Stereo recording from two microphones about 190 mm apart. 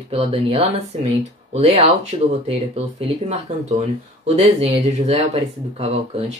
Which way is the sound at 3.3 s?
35° right (ahead or behind).